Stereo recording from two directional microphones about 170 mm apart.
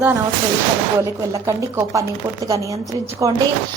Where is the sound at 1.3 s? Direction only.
20° right (ahead or behind).